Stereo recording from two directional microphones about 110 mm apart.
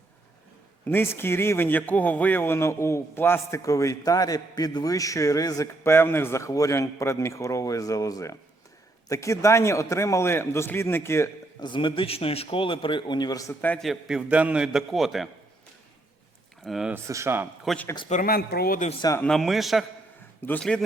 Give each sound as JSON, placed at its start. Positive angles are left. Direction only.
{"t": 0.9, "sound": "a man's voice", "side_deg": 20}
{"t": 11.6, "sound": "a man's voice", "side_deg": 50}
{"t": 13.7, "sound": "a man's voice", "side_deg": 0}
{"t": 16.6, "sound": "a man's voice", "side_deg": 0}
{"t": 16.9, "sound": "speech", "side_deg": -25}
{"t": 18.1, "sound": "speech", "side_deg": 90}
{"t": 19.2, "sound": "a man's voice", "side_deg": 0}